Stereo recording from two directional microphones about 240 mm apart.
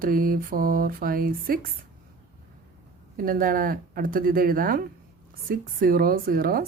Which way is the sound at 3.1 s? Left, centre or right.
Right.